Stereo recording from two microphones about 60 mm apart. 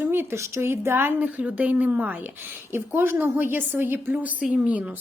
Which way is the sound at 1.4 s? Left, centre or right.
Right.